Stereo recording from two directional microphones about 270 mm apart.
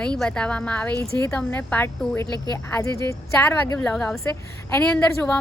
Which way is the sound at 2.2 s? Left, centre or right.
Centre.